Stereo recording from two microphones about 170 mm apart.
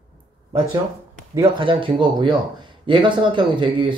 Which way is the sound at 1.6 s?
30° right (ahead or behind).